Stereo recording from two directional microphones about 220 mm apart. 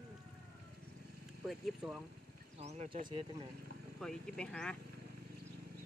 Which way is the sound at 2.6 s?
30° right (ahead or behind).